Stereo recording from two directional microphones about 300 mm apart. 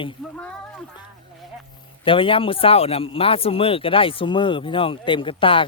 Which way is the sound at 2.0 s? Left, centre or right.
Centre.